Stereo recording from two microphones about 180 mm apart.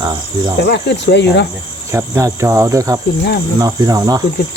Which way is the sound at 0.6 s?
70° left (ahead or behind).